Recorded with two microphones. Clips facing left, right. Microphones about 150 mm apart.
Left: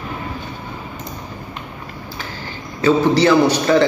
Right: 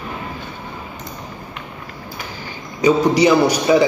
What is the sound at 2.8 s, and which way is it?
A man's voice, 15° right (ahead or behind).